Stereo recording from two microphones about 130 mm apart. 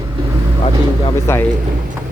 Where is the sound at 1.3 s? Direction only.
20° left (ahead or behind).